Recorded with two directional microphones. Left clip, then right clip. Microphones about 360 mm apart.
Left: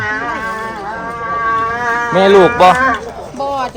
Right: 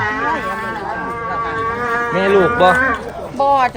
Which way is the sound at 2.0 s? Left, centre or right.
Centre.